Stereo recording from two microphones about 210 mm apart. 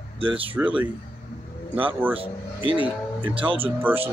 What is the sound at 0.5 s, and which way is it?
Speech, 10° right (ahead or behind).